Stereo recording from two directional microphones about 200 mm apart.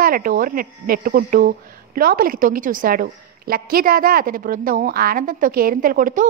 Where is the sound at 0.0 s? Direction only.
45° right (ahead or behind).